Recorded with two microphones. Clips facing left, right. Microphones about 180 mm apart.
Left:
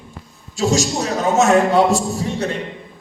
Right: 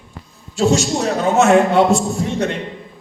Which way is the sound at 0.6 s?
40° left (ahead or behind).